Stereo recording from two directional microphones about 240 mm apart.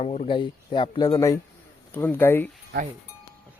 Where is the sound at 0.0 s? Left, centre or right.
Left; by 2.5 s centre.